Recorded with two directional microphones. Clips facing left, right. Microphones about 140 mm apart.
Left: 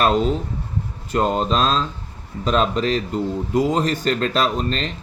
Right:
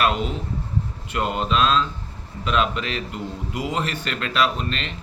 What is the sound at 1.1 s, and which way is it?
A man's voice, 35° left (ahead or behind).